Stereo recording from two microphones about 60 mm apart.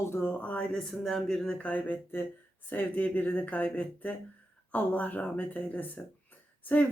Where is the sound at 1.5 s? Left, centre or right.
Left.